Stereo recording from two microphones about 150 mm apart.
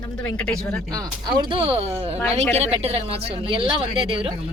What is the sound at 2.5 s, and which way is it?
A woman's voice, 45° right (ahead or behind).